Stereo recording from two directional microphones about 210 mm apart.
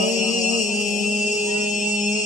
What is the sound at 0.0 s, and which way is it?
Mantra, 35° left (ahead or behind).